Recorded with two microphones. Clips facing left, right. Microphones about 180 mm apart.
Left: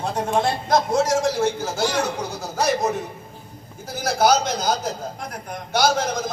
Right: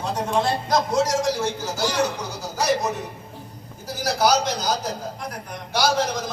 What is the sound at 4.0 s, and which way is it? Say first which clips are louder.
Speech: left 2 dB; 50° left (ahead or behind).